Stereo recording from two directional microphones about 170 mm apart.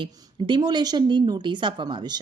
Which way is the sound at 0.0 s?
25° right (ahead or behind).